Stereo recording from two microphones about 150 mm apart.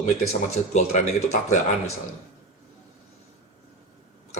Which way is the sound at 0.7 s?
50° left (ahead or behind).